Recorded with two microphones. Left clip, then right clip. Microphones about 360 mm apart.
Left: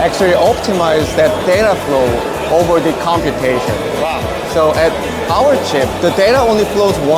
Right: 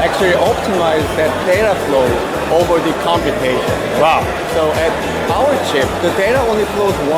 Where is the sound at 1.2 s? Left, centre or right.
Left.